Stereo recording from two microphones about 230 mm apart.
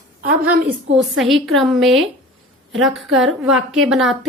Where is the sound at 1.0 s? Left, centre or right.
Centre.